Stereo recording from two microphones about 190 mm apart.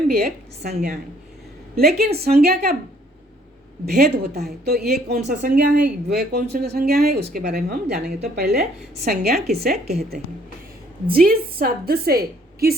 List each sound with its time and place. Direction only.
0.1 s a woman's voice: 55° right (ahead or behind)
3.8 s a woman's voice: 55° right (ahead or behind)
5.2 s a woman's voice: 45° right (ahead or behind)